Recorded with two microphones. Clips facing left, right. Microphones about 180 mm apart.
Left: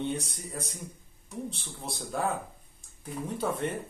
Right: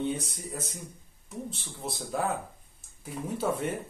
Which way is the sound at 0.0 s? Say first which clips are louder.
Right 1 dB; centre (ahead or behind).